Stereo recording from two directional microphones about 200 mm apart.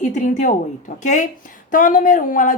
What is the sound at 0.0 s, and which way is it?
Speech, 40° left (ahead or behind).